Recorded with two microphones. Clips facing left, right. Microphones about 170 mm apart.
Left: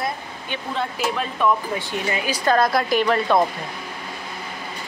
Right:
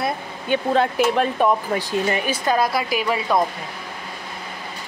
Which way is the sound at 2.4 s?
10° right (ahead or behind).